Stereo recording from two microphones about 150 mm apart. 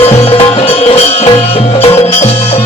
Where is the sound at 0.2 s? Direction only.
45° left (ahead or behind).